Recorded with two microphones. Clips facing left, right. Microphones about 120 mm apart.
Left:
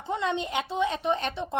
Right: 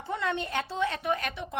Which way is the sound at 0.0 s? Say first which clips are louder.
Left 2 dB; 20° left (ahead or behind).